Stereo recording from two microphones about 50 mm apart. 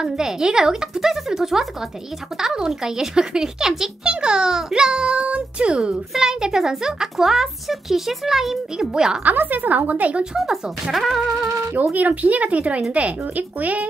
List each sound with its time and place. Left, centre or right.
0.0 s speech: centre
6.1 s speech: centre
9.2 s a woman's voice: right
10.3 s speech: centre
11.9 s speech: right